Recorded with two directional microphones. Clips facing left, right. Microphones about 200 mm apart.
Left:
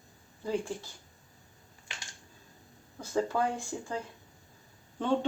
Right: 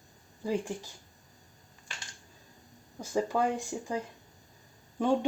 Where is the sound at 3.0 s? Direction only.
15° right (ahead or behind).